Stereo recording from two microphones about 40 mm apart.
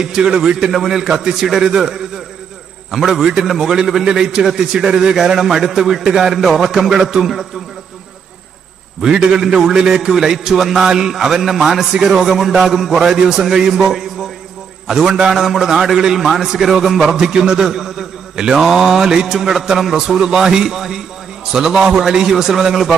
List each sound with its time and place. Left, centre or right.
0.0 s mantra: centre
3.1 s mantra: centre
3.4 s mantra: centre
9.0 s a man's voice: right
9.4 s mantra: centre
13.0 s mantra: centre
15.4 s mantra: centre
16.1 s speech: centre
17.2 s mantra: centre